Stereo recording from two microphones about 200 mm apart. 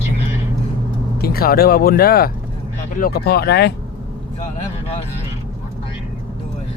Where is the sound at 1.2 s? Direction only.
50° left (ahead or behind).